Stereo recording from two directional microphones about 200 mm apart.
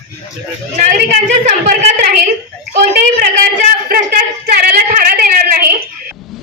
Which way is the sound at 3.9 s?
50° right (ahead or behind).